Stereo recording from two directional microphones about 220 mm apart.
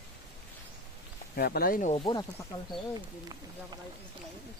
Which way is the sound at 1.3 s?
45° left (ahead or behind).